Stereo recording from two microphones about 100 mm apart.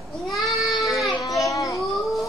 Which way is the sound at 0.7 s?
Centre (ahead or behind).